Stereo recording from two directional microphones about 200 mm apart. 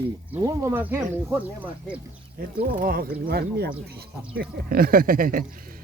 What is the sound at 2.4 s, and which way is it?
Speech, 45° right (ahead or behind).